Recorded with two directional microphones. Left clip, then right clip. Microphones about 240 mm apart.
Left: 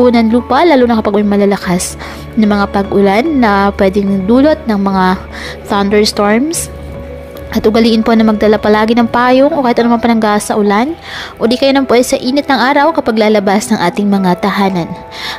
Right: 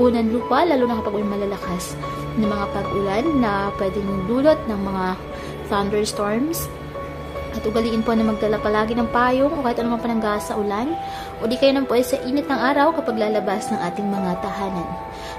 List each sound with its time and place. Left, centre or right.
0.0 s a woman's voice: left
7.5 s a woman's voice: left